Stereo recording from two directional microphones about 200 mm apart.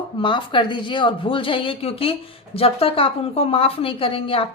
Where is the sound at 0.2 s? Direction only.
25° left (ahead or behind).